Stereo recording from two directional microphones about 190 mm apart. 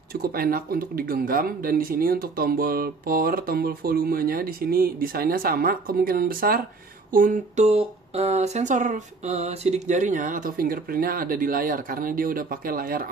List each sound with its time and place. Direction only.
0.1 s speech: 50° right (ahead or behind)